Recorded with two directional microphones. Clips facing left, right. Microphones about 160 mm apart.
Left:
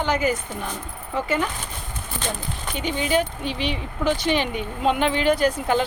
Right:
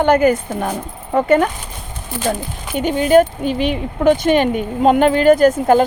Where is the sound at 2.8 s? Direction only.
50° right (ahead or behind).